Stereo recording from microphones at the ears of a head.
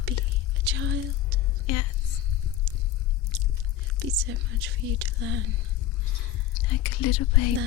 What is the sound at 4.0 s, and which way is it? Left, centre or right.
Speech, right.